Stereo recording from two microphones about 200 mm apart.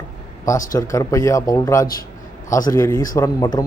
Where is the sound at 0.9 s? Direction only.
15° left (ahead or behind).